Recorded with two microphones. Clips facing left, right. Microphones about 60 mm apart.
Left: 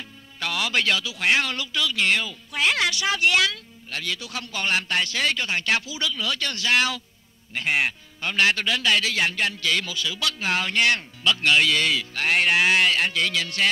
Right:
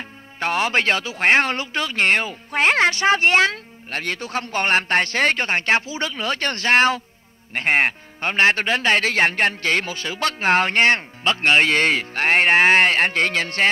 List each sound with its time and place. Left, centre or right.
0.4 s speech: right